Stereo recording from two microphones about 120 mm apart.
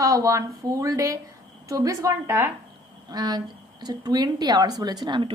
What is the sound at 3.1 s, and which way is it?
A woman's voice, 35° right (ahead or behind).